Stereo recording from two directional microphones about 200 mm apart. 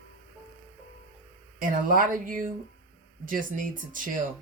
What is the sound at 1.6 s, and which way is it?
Speech, 45° right (ahead or behind).